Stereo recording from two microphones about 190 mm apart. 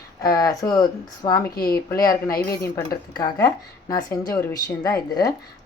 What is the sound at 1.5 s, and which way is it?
Speech, 50° left (ahead or behind).